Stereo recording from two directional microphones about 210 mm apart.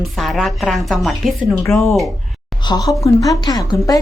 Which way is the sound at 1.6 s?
10° left (ahead or behind).